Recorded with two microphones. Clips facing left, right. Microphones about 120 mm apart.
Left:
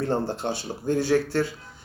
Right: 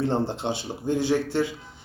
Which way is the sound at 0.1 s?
20° right (ahead or behind).